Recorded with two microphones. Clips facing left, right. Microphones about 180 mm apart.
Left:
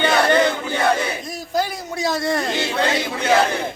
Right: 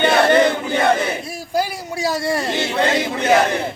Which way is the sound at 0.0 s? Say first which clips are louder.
Right 3 dB; 25° right (ahead or behind).